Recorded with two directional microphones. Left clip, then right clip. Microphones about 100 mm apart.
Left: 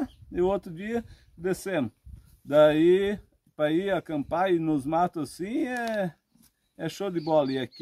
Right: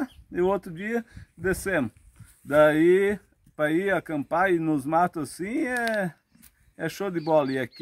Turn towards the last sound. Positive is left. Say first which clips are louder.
# right 2 dB
turn(degrees=10)  # may be behind; listen again after turning